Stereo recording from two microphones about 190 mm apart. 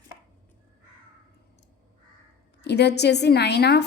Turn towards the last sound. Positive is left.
turn(degrees=60)  # may be behind; listen again after turning